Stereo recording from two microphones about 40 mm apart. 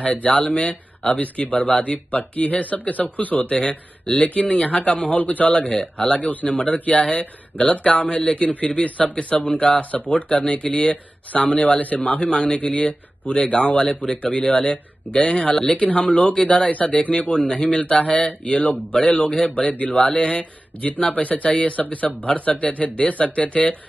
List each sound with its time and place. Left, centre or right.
0.0 s speech: left
0.6 s speech: left
3.5 s speech: left
5.5 s speech: left
21.1 s speech: left